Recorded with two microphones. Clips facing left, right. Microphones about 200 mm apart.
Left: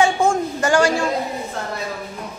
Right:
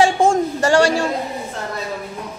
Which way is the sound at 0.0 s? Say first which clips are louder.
Right 2 dB; 90° right.